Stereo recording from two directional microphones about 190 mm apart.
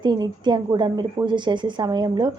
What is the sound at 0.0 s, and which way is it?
A woman's voice, 25° right (ahead or behind).